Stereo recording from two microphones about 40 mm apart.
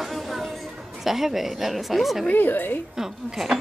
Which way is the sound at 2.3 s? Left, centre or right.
Left.